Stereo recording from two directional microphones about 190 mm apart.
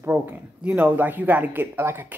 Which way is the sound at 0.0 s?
10° right (ahead or behind).